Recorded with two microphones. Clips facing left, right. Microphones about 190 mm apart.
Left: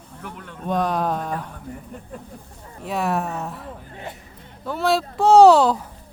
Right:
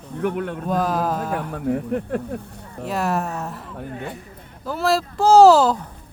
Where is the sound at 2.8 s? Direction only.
Centre (ahead or behind).